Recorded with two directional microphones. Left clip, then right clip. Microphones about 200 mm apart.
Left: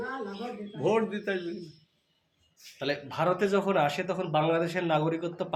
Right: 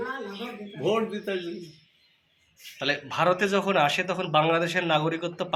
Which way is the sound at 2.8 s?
Centre (ahead or behind).